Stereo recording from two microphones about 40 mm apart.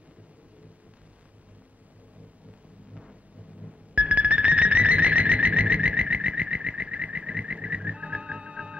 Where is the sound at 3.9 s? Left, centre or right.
Right.